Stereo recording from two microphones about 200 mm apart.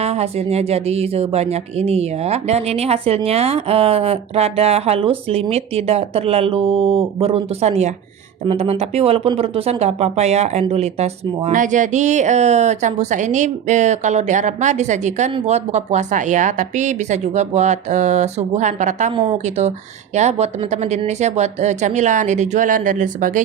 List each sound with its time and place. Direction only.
0.0 s speech: 30° right (ahead or behind)